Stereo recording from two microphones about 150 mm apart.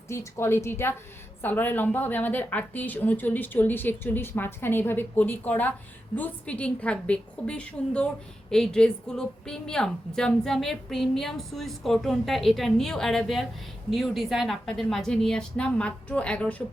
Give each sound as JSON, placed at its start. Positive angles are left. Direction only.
{"t": 0.1, "sound": "a woman's voice", "side_deg": 20}